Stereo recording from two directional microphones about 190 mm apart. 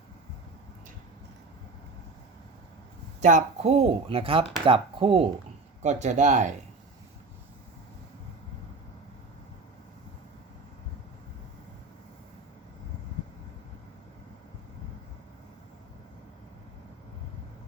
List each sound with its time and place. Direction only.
3.2 s speech: 40° right (ahead or behind)